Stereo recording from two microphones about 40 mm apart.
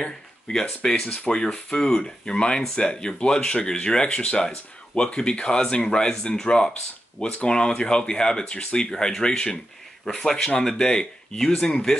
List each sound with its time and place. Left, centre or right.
0.0 s speech: centre
1.0 s speech: left
1.3 s speech: centre